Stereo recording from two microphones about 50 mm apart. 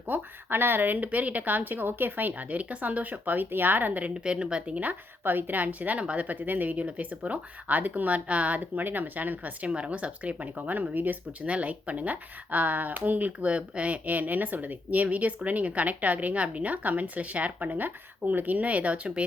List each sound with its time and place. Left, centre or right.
0.1 s a woman's voice: right
4.1 s speech: centre
5.2 s a woman's voice: right
11.4 s a woman's voice: right